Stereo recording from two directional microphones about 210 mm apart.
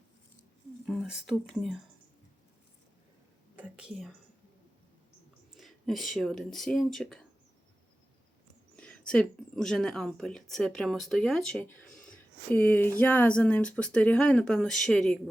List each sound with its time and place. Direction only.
0.9 s speech: centre (ahead or behind)
3.5 s a woman's voice: 5° right (ahead or behind)
5.5 s speech: centre (ahead or behind)
8.7 s speech: 5° left (ahead or behind)